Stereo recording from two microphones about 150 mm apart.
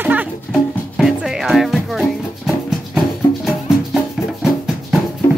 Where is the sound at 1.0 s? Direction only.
Centre (ahead or behind).